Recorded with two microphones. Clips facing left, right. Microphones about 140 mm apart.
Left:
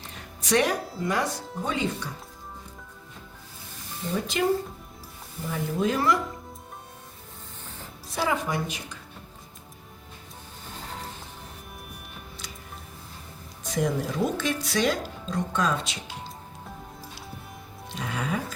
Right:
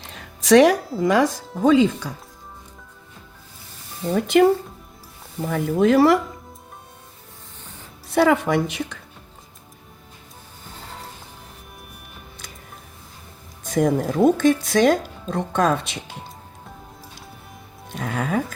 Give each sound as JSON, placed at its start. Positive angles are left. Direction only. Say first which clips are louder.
{"t": 0.0, "sound": "music", "louder": "right 2 dB", "side_deg": -90}
{"t": 0.9, "sound": "speech", "louder": "right 9 dB", "side_deg": -90}
{"t": 4.1, "sound": "speech", "louder": "right 9 dB", "side_deg": -60}
{"t": 8.1, "sound": "a woman's voice", "louder": "right 10 dB", "side_deg": -65}
{"t": 13.7, "sound": "speech", "louder": "right 7 dB", "side_deg": -50}
{"t": 17.9, "sound": "speech", "louder": "right 6 dB", "side_deg": -50}